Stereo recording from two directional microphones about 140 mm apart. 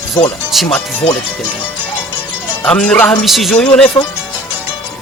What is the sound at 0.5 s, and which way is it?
Speech, centre (ahead or behind).